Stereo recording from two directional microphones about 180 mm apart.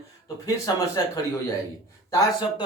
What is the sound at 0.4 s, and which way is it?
Speech, 20° left (ahead or behind).